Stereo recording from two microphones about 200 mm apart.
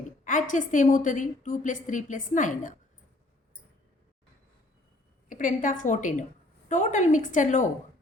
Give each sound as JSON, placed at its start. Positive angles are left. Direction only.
{"t": 0.3, "sound": "a woman's voice", "side_deg": 40}
{"t": 5.3, "sound": "a woman's voice", "side_deg": 40}